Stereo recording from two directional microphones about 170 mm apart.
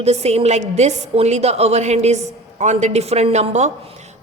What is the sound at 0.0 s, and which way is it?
A woman's voice, 40° right (ahead or behind).